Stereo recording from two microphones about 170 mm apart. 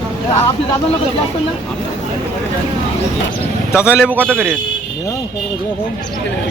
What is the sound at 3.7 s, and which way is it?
Speech, 5° right (ahead or behind).